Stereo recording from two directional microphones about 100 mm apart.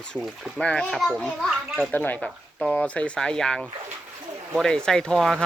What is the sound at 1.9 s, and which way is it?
Speech, 15° left (ahead or behind).